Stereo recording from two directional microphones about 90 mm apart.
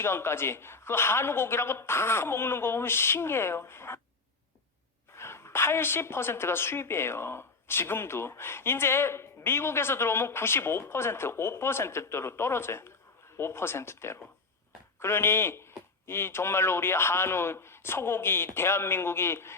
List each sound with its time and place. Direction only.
0.0 s a woman's voice: 30° left (ahead or behind)
5.1 s a woman's voice: 30° left (ahead or behind)